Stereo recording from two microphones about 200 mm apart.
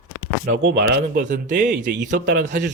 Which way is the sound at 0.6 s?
60° right (ahead or behind).